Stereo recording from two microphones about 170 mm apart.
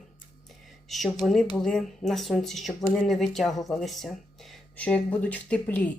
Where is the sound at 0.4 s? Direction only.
Centre (ahead or behind).